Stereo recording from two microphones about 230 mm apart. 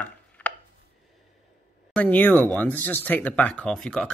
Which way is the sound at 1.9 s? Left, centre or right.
Centre.